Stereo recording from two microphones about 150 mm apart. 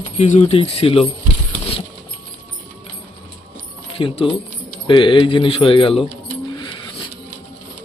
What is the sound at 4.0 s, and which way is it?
Speech, 35° left (ahead or behind).